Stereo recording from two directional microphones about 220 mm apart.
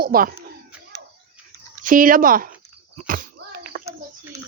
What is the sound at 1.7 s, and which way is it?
Speech, 40° right (ahead or behind).